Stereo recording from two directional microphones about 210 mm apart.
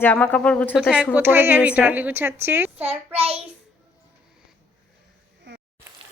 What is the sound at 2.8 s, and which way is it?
Speech, 30° right (ahead or behind).